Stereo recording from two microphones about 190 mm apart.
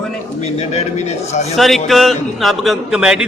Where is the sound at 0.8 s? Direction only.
35° left (ahead or behind).